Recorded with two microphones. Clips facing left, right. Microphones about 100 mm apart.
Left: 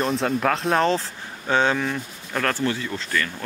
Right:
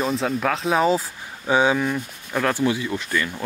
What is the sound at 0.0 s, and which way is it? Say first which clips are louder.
Speech: even; centre (ahead or behind).